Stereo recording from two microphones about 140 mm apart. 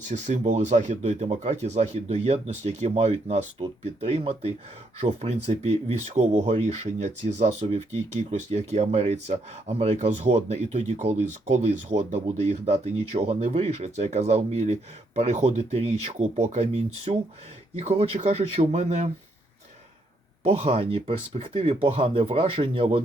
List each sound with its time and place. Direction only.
0.0 s speech: 55° right (ahead or behind)
20.4 s speech: 45° right (ahead or behind)